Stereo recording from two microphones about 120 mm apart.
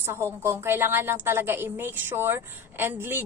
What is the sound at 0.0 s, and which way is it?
A woman's voice, 20° right (ahead or behind).